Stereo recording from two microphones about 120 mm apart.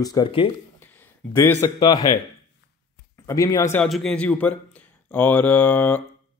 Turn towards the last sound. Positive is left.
turn(degrees=15)  # may be behind; listen again after turning